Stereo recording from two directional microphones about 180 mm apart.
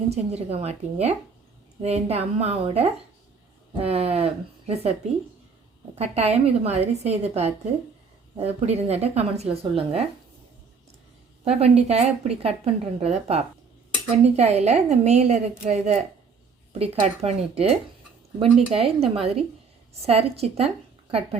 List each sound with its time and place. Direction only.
0.1 s speech: 35° right (ahead or behind)
6.0 s speech: 35° right (ahead or behind)
11.4 s speech: 35° right (ahead or behind)